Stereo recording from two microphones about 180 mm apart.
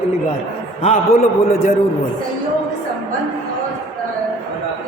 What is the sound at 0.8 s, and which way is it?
Speech, 35° left (ahead or behind).